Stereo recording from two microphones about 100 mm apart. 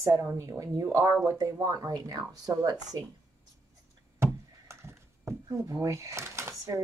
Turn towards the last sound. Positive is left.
turn(degrees=-30)  # may be behind; listen again after turning